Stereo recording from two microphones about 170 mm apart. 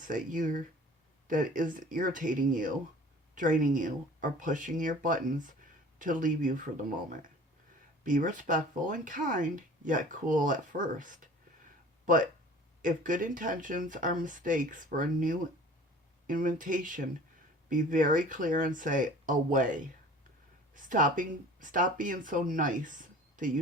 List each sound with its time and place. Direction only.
0.0 s speech: 50° right (ahead or behind)
8.0 s speech: 50° right (ahead or behind)